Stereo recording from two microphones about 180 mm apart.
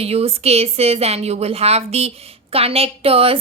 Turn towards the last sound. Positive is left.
turn(degrees=-30)  # may be behind; listen again after turning